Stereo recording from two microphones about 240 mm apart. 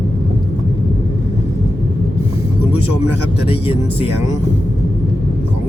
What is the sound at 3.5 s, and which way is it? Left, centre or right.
Speech, left.